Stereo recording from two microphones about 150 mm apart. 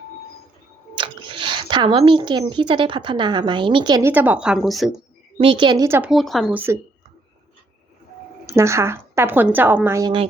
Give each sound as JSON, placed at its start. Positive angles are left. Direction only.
{"t": 0.9, "sound": "speech", "side_deg": -35}
{"t": 4.0, "sound": "a woman's voice", "side_deg": -10}
{"t": 5.4, "sound": "a woman's voice", "side_deg": -35}
{"t": 6.0, "sound": "a woman's voice", "side_deg": 0}
{"t": 6.5, "sound": "a woman's voice", "side_deg": -10}
{"t": 8.4, "sound": "a woman's voice", "side_deg": -20}